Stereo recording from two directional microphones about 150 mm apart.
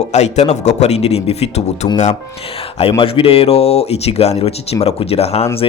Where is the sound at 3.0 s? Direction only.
40° left (ahead or behind).